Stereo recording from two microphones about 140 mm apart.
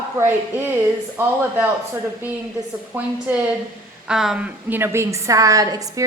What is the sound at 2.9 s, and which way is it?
A woman's voice, 15° right (ahead or behind).